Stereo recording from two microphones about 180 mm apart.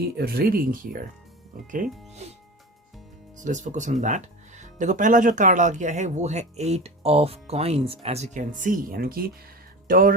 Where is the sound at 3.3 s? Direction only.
45° right (ahead or behind).